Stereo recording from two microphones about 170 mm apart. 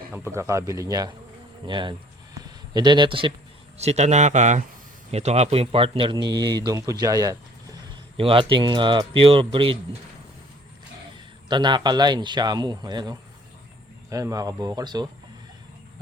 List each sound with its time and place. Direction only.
0.1 s a man's voice: 15° right (ahead or behind)
1.6 s a sound: 30° right (ahead or behind)
3.8 s a man's voice: 40° right (ahead or behind); by 7.8 s 20° right (ahead or behind)
8.1 s speech: 30° right (ahead or behind)
11.4 s a man's voice: 25° right (ahead or behind)